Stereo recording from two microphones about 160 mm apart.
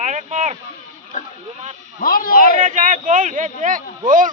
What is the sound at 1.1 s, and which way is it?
Speech, 50° left (ahead or behind).